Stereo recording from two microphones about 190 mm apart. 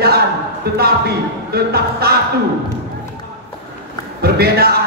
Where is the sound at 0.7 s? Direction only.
55° right (ahead or behind).